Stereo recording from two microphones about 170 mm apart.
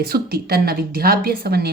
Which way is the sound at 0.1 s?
65° right (ahead or behind).